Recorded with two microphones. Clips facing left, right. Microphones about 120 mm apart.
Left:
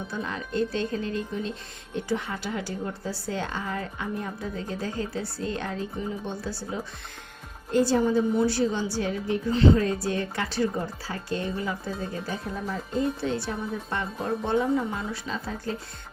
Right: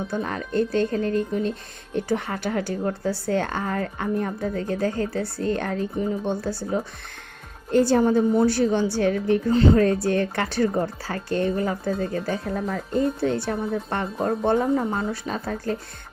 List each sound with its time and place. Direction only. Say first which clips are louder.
0.1 s speech: right 5 dB; 55° right (ahead or behind)
7.9 s speech: right 4 dB; 55° right (ahead or behind)
9.5 s speech: right 2 dB; 40° right (ahead or behind)
9.8 s speech: right 6 dB; 60° right (ahead or behind)